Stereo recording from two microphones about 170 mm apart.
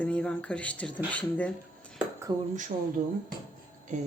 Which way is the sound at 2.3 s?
25° right (ahead or behind).